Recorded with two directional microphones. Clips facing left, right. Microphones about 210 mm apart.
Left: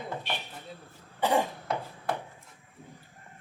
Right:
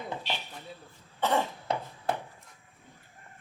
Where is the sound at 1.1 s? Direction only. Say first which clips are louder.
Left 2 dB; 15° left (ahead or behind).